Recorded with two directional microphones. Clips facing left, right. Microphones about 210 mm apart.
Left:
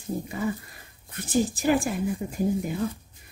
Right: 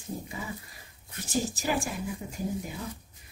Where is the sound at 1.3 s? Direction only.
55° left (ahead or behind).